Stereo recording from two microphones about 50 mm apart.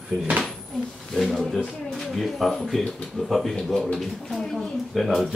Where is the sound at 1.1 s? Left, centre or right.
Centre.